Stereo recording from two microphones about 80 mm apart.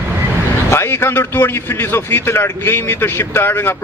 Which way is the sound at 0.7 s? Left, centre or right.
Left.